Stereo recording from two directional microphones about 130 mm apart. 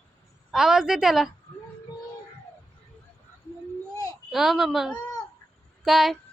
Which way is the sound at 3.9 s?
30° left (ahead or behind).